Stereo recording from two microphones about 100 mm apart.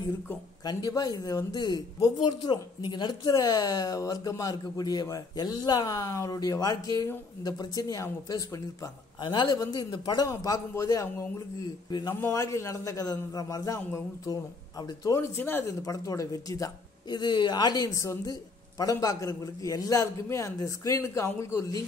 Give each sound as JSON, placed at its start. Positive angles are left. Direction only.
{"t": 0.7, "sound": "speech", "side_deg": 35}
{"t": 9.2, "sound": "a man's voice", "side_deg": 50}
{"t": 12.2, "sound": "speech", "side_deg": 30}
{"t": 14.8, "sound": "speech", "side_deg": 40}
{"t": 15.1, "sound": "a man's voice", "side_deg": 25}
{"t": 15.8, "sound": "speech", "side_deg": 35}
{"t": 17.2, "sound": "a man's voice", "side_deg": 50}